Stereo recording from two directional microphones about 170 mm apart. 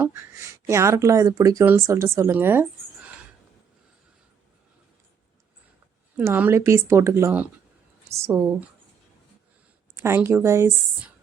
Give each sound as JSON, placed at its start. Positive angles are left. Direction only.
{"t": 0.0, "sound": "speech", "side_deg": -15}
{"t": 6.1, "sound": "speech", "side_deg": -10}
{"t": 9.9, "sound": "speech", "side_deg": -15}